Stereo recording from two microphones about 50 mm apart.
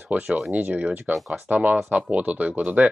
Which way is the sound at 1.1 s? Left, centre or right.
Right.